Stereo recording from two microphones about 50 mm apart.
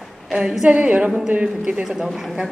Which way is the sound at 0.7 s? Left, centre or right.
Right.